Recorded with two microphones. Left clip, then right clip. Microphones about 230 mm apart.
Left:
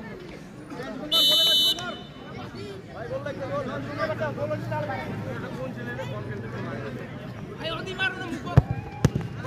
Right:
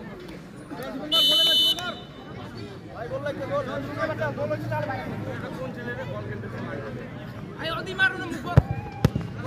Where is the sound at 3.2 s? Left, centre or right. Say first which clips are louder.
Right 5 dB; right.